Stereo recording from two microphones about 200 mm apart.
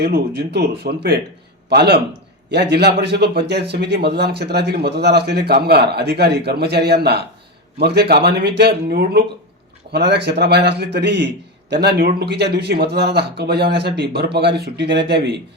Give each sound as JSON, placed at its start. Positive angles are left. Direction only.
{"t": 0.0, "sound": "speech", "side_deg": -55}